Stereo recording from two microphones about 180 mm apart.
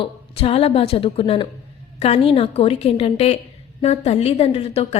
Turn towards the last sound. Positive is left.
turn(degrees=35)  # may be behind; listen again after turning